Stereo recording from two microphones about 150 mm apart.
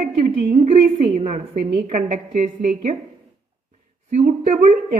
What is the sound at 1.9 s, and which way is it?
A woman's voice, 60° right (ahead or behind).